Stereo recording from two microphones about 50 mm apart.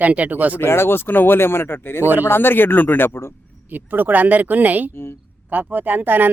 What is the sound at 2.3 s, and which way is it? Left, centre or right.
Speech, left.